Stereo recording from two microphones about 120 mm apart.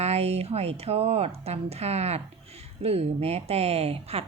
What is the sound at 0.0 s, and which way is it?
Speech, 60° right (ahead or behind).